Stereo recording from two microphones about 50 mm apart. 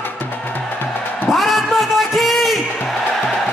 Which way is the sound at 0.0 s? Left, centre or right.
Left.